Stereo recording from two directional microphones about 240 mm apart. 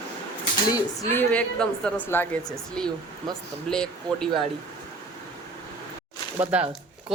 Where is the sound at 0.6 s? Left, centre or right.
Centre.